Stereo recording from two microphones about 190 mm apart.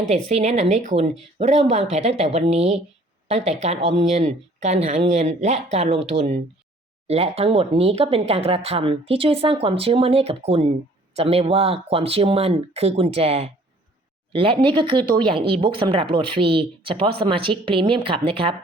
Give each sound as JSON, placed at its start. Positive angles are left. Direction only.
{"t": 0.1, "sound": "speech", "side_deg": -35}